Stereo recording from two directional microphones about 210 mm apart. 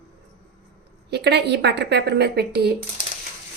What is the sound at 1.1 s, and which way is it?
A woman's voice, 50° right (ahead or behind).